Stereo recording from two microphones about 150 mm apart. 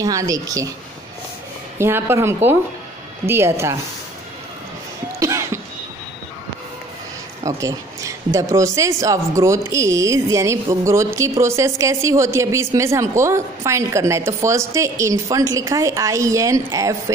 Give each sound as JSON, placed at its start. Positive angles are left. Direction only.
{"t": 0.0, "sound": "speech", "side_deg": -25}
{"t": 1.8, "sound": "speech", "side_deg": -15}
{"t": 5.2, "sound": "a sound", "side_deg": -20}
{"t": 7.4, "sound": "speech", "side_deg": -20}